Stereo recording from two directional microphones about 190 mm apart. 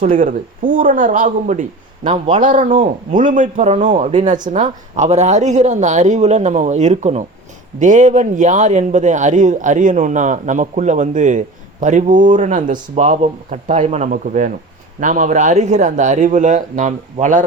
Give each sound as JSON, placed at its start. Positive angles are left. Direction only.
{"t": 0.0, "sound": "speech", "side_deg": -45}
{"t": 2.1, "sound": "speech", "side_deg": -30}
{"t": 2.4, "sound": "speech", "side_deg": -45}